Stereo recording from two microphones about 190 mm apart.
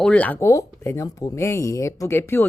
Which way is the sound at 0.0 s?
5° left (ahead or behind).